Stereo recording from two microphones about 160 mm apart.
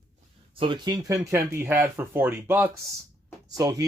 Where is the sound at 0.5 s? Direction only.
30° right (ahead or behind).